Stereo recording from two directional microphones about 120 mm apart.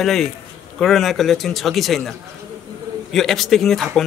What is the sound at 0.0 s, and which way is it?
A man's voice, centre (ahead or behind).